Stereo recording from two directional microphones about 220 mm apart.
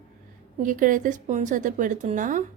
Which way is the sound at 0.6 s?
40° right (ahead or behind).